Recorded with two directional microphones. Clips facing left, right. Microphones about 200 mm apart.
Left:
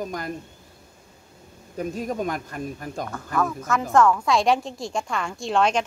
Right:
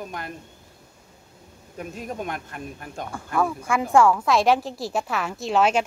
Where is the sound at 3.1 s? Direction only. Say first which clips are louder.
Right 2 dB; 10° right (ahead or behind).